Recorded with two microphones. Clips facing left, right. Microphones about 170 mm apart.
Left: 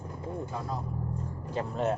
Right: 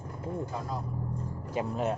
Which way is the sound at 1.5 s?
10° right (ahead or behind).